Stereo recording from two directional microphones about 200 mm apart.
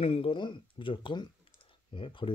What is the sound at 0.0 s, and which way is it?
Speech, 30° left (ahead or behind).